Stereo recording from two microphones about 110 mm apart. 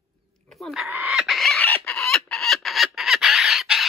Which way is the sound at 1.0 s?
Centre (ahead or behind).